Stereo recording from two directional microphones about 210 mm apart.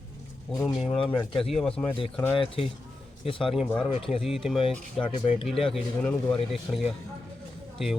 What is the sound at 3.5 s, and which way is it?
Speech, centre (ahead or behind).